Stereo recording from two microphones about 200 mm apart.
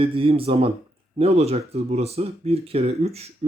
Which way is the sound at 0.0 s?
25° right (ahead or behind).